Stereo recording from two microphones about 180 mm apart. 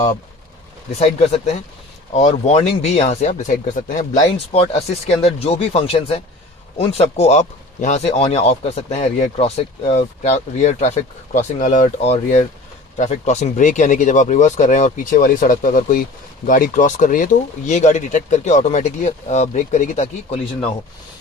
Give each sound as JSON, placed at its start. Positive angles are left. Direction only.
{"t": 0.9, "sound": "speech", "side_deg": 35}